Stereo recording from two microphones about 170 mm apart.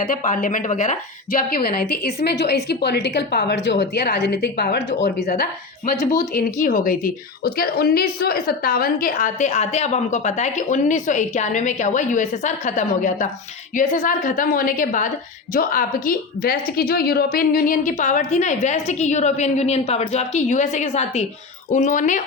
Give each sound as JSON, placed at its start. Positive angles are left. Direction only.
{"t": 0.0, "sound": "a woman's voice", "side_deg": 50}
{"t": 4.8, "sound": "speech", "side_deg": 45}
{"t": 5.4, "sound": "a woman's voice", "side_deg": 60}
{"t": 21.7, "sound": "speech", "side_deg": 50}